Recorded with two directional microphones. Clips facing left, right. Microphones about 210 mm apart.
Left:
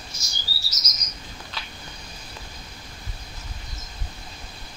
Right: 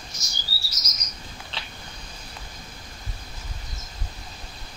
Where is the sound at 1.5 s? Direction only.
30° right (ahead or behind).